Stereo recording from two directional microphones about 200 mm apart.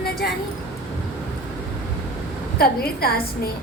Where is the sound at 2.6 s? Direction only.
50° left (ahead or behind).